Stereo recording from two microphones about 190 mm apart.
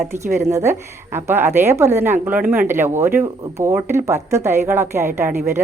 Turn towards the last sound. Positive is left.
turn(degrees=-10)  # may be behind; listen again after turning